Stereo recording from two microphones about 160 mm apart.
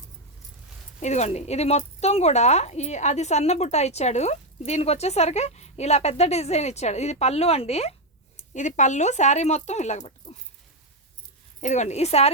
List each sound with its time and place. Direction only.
0.9 s speech: 45° left (ahead or behind)
11.6 s speech: 45° left (ahead or behind)